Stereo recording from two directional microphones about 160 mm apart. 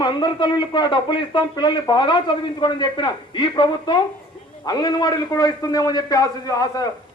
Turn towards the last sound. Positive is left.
turn(degrees=25)  # may be behind; listen again after turning